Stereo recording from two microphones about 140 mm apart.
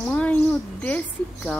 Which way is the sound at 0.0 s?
10° left (ahead or behind).